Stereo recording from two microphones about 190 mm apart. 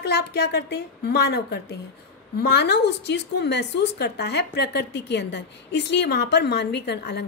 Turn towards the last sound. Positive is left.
turn(degrees=65)  # may be behind; listen again after turning